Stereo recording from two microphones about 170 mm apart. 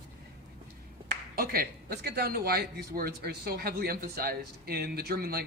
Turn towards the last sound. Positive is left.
turn(degrees=-65)  # may be behind; listen again after turning